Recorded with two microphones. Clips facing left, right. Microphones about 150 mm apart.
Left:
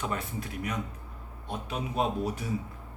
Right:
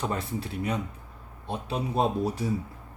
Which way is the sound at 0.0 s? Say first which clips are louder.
Right 3 dB; 30° right (ahead or behind).